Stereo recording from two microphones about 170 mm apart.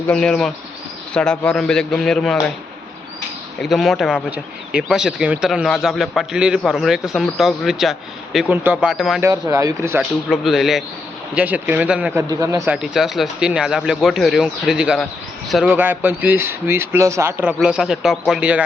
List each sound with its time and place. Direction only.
0.1 s speech: 5° left (ahead or behind)
3.6 s speech: centre (ahead or behind)
9.2 s a man's voice: 15° right (ahead or behind)
10.0 s a man's voice: centre (ahead or behind)
12.3 s speech: 20° right (ahead or behind)
12.7 s speech: 5° right (ahead or behind)
15.7 s a man's voice: 10° right (ahead or behind)